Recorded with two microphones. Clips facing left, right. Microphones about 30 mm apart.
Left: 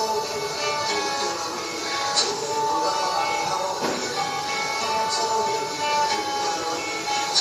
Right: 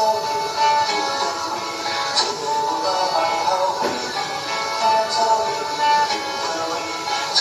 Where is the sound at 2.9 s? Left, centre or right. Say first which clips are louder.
Right 4 dB; right.